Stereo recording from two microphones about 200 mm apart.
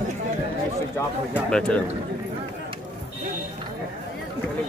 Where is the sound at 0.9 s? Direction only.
5° left (ahead or behind).